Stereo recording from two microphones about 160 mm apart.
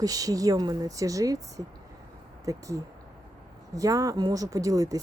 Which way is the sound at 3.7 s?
20° right (ahead or behind).